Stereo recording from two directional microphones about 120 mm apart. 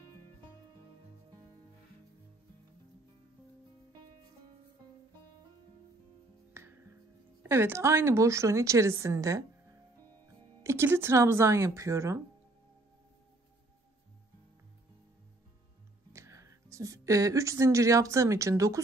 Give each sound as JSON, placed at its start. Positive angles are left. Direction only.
{"t": 6.5, "sound": "music", "side_deg": -20}
{"t": 7.4, "sound": "a woman's voice", "side_deg": -20}
{"t": 10.6, "sound": "a woman's voice", "side_deg": -20}
{"t": 16.1, "sound": "speech", "side_deg": -25}